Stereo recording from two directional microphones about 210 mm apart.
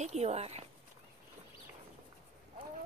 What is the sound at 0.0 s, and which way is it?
Speech, 30° right (ahead or behind).